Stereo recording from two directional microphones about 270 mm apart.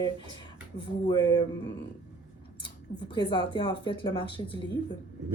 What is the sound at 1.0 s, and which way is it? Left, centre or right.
Speech, centre.